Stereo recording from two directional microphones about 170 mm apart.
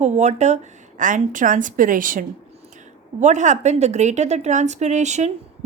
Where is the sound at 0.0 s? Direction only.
40° right (ahead or behind).